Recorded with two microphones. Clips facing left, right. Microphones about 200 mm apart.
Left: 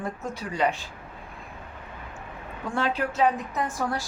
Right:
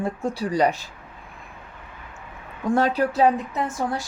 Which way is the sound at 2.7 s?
40° right (ahead or behind).